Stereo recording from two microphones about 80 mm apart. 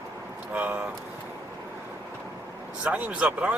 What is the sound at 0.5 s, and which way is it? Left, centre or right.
Speech, right.